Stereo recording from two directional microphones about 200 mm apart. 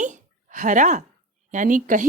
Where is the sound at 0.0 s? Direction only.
40° right (ahead or behind).